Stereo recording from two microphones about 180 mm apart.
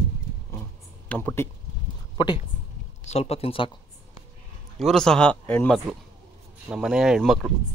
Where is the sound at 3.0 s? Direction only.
35° left (ahead or behind).